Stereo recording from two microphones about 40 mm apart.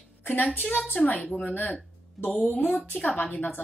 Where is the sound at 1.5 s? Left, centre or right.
Left.